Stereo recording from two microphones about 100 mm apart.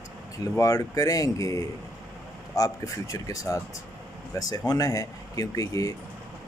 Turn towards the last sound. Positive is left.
turn(degrees=35)  # may be behind; listen again after turning